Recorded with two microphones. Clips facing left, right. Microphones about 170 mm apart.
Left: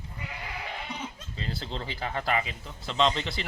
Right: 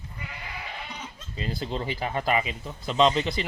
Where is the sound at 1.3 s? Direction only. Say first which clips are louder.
Right 7 dB; 15° right (ahead or behind).